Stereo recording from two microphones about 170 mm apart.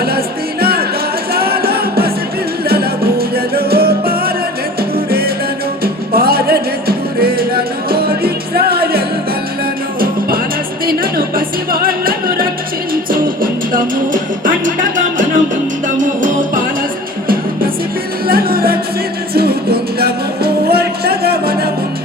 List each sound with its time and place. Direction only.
0.6 s music: 65° right (ahead or behind)
18.3 s music: 60° right (ahead or behind)